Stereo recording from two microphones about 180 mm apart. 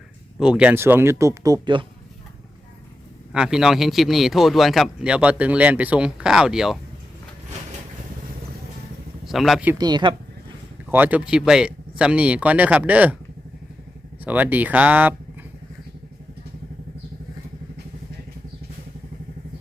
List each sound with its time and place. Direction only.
0.3 s speech: 5° right (ahead or behind); by 1.8 s 20° right (ahead or behind)
3.3 s a man's voice: 5° right (ahead or behind)
9.2 s speech: centre (ahead or behind)
9.7 s speech: 20° right (ahead or behind)
10.9 s speech: 10° right (ahead or behind)
14.3 s speech: 10° right (ahead or behind)